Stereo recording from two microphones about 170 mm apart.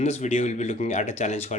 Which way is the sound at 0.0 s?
40° left (ahead or behind).